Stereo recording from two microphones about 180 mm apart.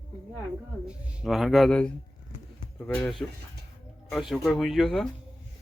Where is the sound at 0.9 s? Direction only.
5° right (ahead or behind).